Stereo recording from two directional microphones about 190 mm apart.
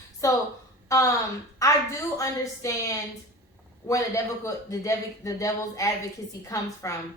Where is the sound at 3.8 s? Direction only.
15° left (ahead or behind).